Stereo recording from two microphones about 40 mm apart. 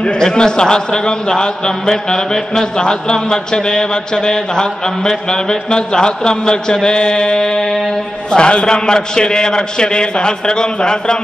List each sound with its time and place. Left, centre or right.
0.0 s a man's voice: centre